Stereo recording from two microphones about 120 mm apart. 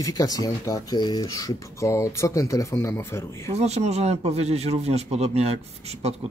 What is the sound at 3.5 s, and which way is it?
Speech, 65° right (ahead or behind).